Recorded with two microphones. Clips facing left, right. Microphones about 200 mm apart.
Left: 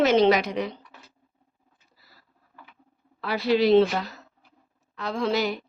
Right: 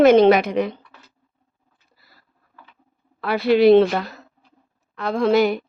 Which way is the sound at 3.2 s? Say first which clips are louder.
Right 7 dB; 60° right (ahead or behind).